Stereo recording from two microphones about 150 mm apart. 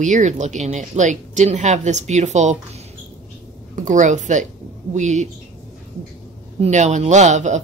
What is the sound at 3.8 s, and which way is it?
A woman's voice, 55° right (ahead or behind).